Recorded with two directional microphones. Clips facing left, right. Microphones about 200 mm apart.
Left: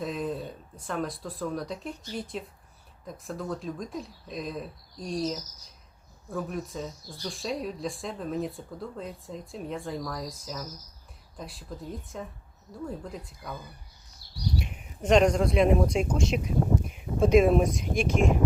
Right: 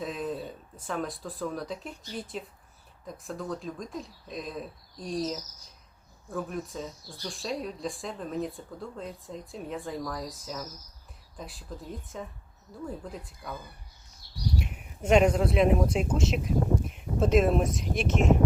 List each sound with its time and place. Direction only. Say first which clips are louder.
0.0 s speech: left 1 dB; centre (ahead or behind)
14.2 s a sound: left 1 dB; 35° left (ahead or behind)
14.6 s speech: even; 5° right (ahead or behind)